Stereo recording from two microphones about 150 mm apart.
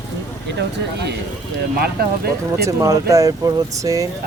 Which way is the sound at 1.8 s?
90° right.